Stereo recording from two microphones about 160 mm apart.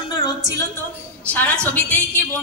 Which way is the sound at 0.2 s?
20° left (ahead or behind).